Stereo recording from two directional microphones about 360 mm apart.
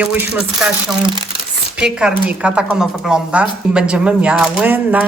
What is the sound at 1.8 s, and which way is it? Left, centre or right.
A woman's voice, centre.